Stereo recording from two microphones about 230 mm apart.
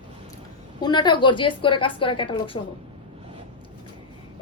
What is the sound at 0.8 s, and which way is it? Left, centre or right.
A woman's voice, centre.